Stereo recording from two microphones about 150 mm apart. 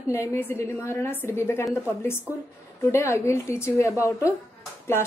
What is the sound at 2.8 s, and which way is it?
A woman's voice, 20° left (ahead or behind).